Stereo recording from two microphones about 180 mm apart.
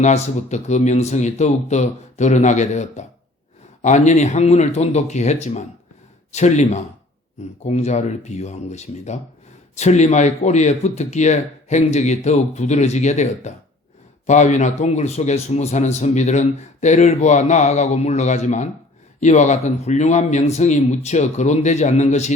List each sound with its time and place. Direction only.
0.0 s a man's voice: 40° left (ahead or behind)